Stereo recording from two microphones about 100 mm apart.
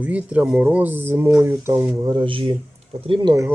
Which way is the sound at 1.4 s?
20° right (ahead or behind).